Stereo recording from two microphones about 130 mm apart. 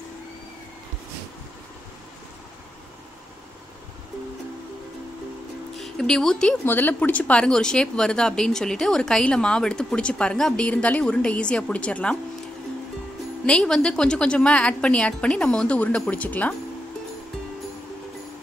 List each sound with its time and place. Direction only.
5.8 s speech: 5° left (ahead or behind)
6.6 s speech: 15° left (ahead or behind)
13.5 s speech: 5° left (ahead or behind)